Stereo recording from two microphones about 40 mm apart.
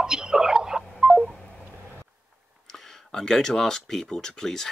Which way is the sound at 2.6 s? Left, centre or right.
Centre.